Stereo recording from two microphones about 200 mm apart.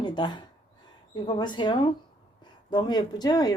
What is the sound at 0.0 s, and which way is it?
Speech, 20° left (ahead or behind).